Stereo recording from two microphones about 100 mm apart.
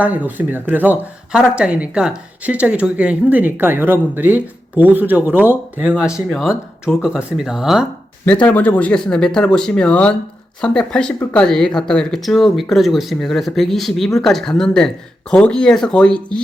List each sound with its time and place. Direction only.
0.0 s speech: 15° right (ahead or behind)
6.0 s speech: 5° right (ahead or behind)
8.2 s speech: 15° left (ahead or behind)